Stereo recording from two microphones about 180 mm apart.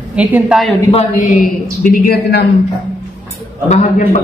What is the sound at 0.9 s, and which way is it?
Speech, 40° left (ahead or behind).